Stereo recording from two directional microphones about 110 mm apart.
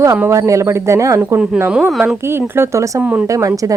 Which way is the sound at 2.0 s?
20° right (ahead or behind).